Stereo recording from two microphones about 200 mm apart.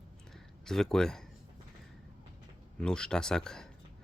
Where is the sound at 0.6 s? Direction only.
Centre (ahead or behind).